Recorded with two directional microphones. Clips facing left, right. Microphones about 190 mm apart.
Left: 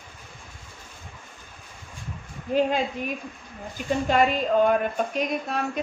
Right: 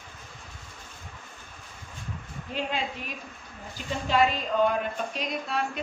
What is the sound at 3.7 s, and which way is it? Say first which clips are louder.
Speech: left 4 dB; 50° left (ahead or behind).